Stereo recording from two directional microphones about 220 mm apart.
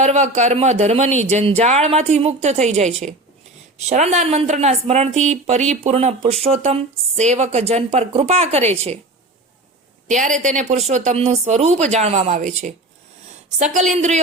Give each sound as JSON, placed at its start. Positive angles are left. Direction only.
{"t": 0.0, "sound": "speech", "side_deg": -30}
{"t": 10.1, "sound": "speech", "side_deg": -35}